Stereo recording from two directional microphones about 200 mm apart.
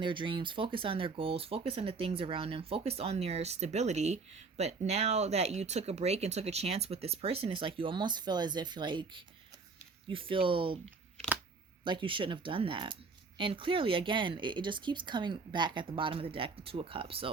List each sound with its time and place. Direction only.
0.0 s speech: 25° right (ahead or behind)
11.9 s speech: 25° right (ahead or behind)